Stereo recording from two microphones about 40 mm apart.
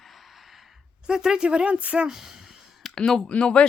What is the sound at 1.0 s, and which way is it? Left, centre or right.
Speech, centre.